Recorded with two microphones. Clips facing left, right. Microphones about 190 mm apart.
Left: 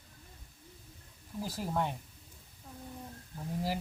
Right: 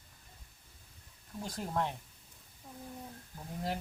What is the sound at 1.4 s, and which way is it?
Speech, 5° left (ahead or behind).